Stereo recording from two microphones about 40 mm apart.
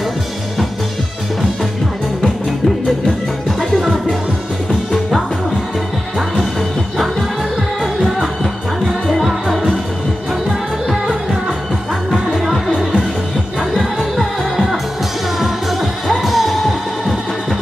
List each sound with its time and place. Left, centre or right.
3.7 s music: centre
7.8 s music: centre
12.4 s music: centre